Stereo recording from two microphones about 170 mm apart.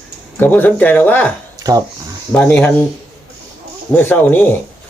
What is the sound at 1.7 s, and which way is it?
Speech, 20° right (ahead or behind).